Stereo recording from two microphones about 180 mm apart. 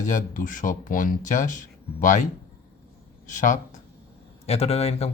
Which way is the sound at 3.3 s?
45° left (ahead or behind).